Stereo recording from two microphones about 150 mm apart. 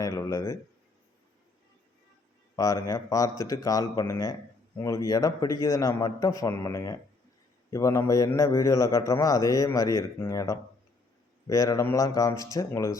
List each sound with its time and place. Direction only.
0.0 s a man's voice: 20° left (ahead or behind)
2.6 s a man's voice: 20° left (ahead or behind)